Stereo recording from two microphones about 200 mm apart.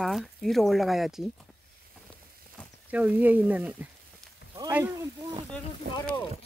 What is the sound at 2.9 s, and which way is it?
Speech, 10° right (ahead or behind).